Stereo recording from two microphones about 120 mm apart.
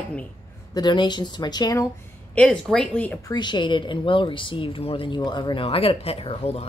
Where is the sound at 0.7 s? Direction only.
40° left (ahead or behind).